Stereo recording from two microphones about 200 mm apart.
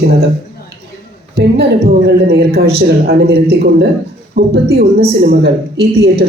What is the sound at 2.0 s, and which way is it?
A woman's voice, 55° right (ahead or behind).